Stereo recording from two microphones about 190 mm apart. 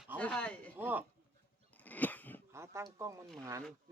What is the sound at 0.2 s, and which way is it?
Speech, 5° left (ahead or behind).